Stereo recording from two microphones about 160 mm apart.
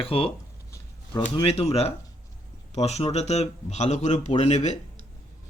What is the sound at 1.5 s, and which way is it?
A man's voice, 40° left (ahead or behind).